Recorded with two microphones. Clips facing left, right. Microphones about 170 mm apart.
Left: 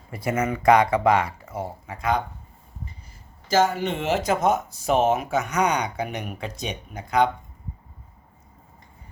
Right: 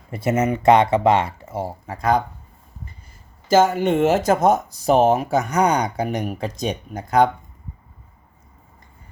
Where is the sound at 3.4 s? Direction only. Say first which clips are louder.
Right 5 dB; 50° right (ahead or behind).